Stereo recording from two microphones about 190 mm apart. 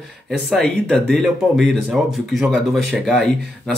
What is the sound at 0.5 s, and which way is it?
Speech, 5° left (ahead or behind).